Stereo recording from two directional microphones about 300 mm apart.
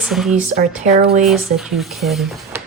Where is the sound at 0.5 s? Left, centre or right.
Right.